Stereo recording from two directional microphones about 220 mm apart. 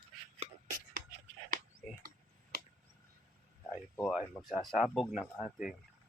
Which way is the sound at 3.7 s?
Centre (ahead or behind).